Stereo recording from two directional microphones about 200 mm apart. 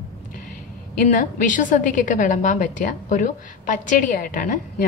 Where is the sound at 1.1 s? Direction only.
40° left (ahead or behind).